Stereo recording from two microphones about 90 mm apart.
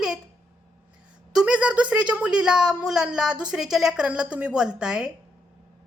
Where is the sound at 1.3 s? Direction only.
10° right (ahead or behind).